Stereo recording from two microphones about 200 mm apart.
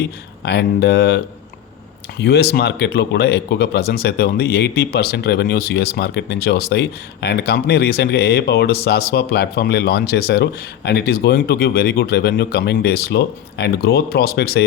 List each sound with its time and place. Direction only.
0.0 s speech: 55° left (ahead or behind)
2.2 s speech: 55° left (ahead or behind)